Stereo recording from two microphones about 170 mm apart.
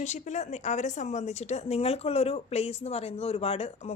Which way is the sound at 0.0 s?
45° left (ahead or behind).